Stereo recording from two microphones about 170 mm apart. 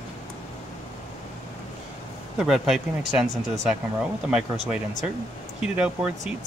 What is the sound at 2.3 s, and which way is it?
Speech, centre (ahead or behind).